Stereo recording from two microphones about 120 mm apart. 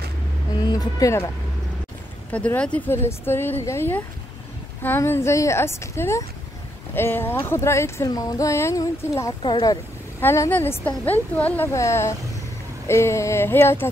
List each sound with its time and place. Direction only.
0.6 s speech: 35° left (ahead or behind)
2.3 s speech: 10° left (ahead or behind); by 9.3 s 25° left (ahead or behind)
9.4 s speech: 40° left (ahead or behind)
10.2 s speech: 20° left (ahead or behind)